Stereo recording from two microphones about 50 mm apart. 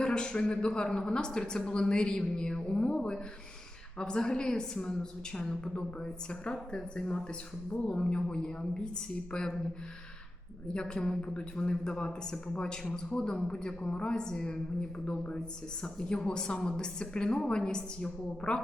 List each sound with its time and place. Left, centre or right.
0.0 s a woman's voice: centre
10.8 s a woman's voice: centre